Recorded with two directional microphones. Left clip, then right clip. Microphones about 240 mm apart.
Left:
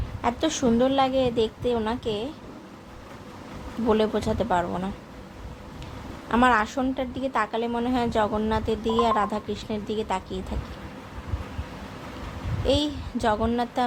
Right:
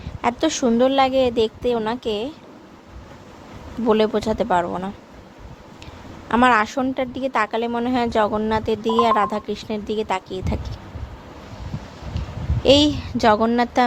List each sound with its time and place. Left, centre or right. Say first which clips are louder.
0.2 s a woman's voice: right 5 dB; right
3.8 s a woman's voice: right 5 dB; right
6.2 s a woman's voice: right 5 dB; right
12.6 s a woman's voice: right 10 dB; right